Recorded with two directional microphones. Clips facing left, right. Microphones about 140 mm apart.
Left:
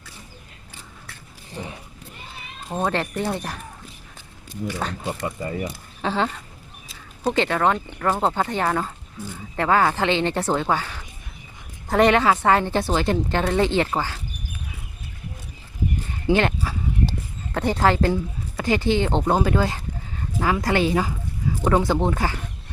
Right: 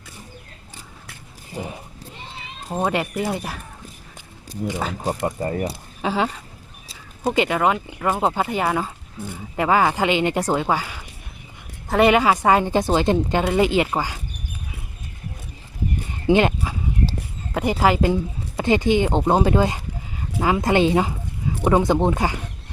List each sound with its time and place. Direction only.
2.6 s a woman's voice: 10° right (ahead or behind)
4.6 s speech: 50° right (ahead or behind)
6.0 s a woman's voice: 10° right (ahead or behind)
16.2 s livestock: 15° right (ahead or behind)
17.5 s a woman's voice: 10° right (ahead or behind)